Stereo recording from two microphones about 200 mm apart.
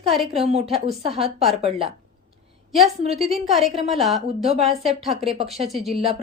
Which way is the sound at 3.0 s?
30° right (ahead or behind).